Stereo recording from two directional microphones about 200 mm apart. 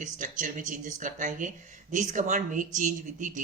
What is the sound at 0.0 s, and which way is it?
A man's voice, 40° right (ahead or behind).